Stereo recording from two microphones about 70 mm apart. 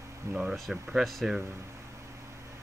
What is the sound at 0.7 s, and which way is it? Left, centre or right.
Speech, centre.